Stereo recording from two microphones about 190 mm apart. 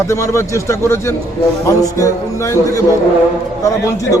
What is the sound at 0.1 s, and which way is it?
A man's voice, 15° left (ahead or behind).